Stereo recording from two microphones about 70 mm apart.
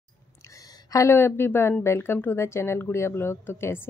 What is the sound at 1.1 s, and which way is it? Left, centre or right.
A woman's voice, left.